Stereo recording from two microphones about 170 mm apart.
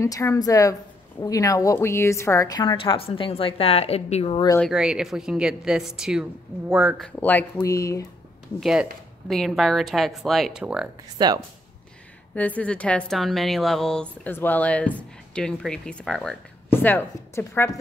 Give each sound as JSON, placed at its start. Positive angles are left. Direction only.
{"t": 0.0, "sound": "a woman's voice", "side_deg": 20}
{"t": 4.6, "sound": "a woman's voice", "side_deg": 0}
{"t": 7.1, "sound": "a woman's voice", "side_deg": 10}
{"t": 8.5, "sound": "a woman's voice", "side_deg": 0}
{"t": 11.1, "sound": "speech", "side_deg": -25}
{"t": 12.4, "sound": "a woman's voice", "side_deg": 10}